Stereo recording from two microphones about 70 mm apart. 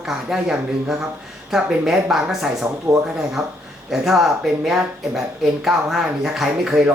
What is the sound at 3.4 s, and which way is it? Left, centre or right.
Speech, right.